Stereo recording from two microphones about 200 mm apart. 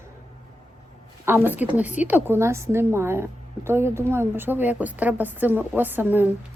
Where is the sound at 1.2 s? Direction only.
10° right (ahead or behind).